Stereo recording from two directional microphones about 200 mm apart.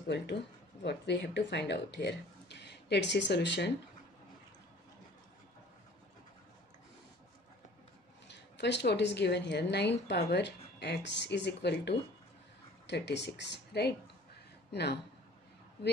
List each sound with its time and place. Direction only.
0.8 s speech: 60° left (ahead or behind)
8.3 s speech: 60° left (ahead or behind)